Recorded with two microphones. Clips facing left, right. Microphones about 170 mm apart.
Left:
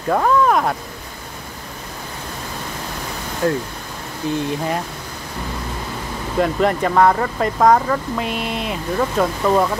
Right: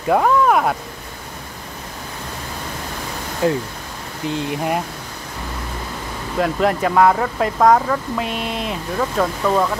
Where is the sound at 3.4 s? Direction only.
20° right (ahead or behind).